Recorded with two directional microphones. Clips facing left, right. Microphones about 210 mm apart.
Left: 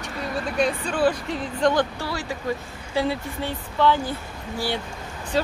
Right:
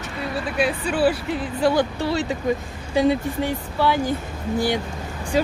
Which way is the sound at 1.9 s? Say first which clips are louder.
Right 7 dB; 20° right (ahead or behind).